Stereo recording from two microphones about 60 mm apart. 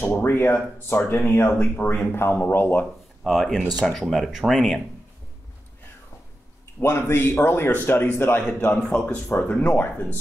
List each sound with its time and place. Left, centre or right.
0.0 s speech: left
3.3 s speech: centre
6.8 s speech: left
8.9 s speech: left